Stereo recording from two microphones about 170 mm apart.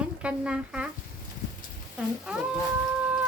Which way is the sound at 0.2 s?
5° right (ahead or behind).